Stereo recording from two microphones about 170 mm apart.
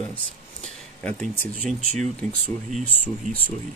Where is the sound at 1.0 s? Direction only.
5° left (ahead or behind).